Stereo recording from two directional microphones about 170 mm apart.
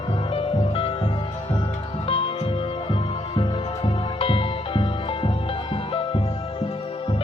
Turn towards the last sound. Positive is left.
turn(degrees=30)  # may be behind; listen again after turning